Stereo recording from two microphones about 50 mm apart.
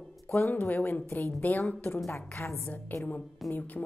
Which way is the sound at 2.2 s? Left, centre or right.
Left.